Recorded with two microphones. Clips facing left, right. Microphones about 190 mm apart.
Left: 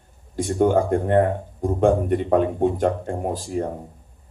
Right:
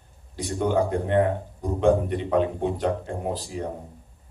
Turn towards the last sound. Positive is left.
turn(degrees=50)  # may be behind; listen again after turning